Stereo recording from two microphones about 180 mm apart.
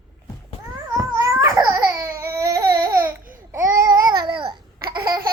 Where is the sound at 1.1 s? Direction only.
20° right (ahead or behind).